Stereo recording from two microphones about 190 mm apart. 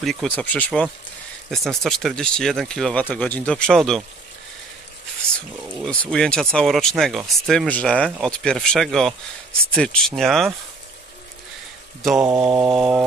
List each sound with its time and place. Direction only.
0.0 s speech: centre (ahead or behind)
5.8 s speech: 5° left (ahead or behind)
12.2 s mantra: 15° right (ahead or behind)
12.4 s speech: 5° right (ahead or behind)